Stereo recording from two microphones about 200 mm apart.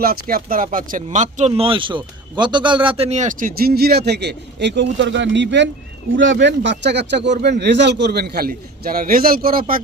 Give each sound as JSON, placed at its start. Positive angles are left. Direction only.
{"t": 0.0, "sound": "speech", "side_deg": -45}